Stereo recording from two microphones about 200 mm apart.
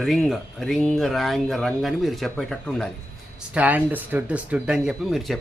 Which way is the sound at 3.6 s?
10° right (ahead or behind).